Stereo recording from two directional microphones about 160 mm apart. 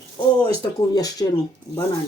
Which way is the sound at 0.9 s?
25° left (ahead or behind).